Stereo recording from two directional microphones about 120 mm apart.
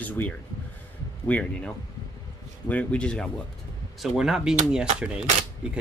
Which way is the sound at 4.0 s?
5° right (ahead or behind).